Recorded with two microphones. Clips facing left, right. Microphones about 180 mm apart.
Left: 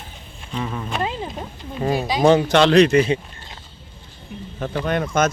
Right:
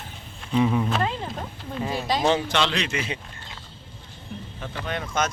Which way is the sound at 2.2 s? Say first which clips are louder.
Left 9 dB; 45° left (ahead or behind).